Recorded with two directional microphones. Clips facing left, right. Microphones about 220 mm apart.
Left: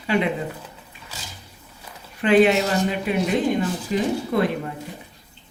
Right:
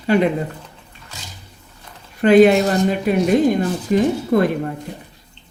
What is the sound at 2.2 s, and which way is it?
A woman's voice, 40° right (ahead or behind).